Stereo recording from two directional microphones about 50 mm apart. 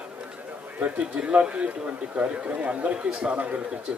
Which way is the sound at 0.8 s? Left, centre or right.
Right.